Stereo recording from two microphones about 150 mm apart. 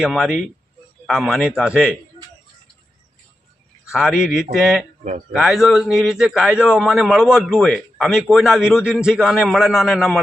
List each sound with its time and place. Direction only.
0.0 s a man's voice: 5° right (ahead or behind)
3.9 s a man's voice: 5° right (ahead or behind)